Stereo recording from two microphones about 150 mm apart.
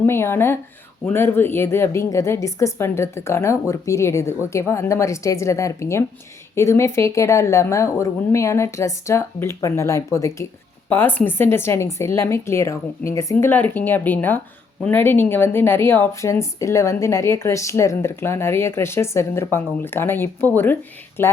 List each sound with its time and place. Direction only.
0.0 s a woman's voice: 15° left (ahead or behind)